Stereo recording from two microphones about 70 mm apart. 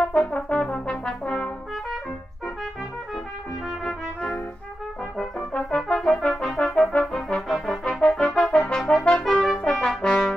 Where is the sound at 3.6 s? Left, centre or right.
Centre.